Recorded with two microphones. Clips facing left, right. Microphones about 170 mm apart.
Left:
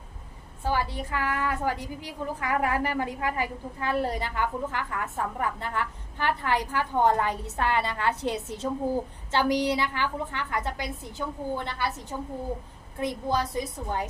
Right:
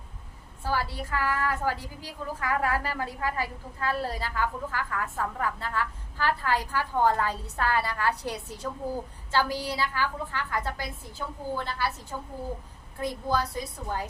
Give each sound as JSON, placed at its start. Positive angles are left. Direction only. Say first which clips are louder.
{"t": 0.6, "sound": "a woman's voice", "louder": "left 2 dB", "side_deg": 20}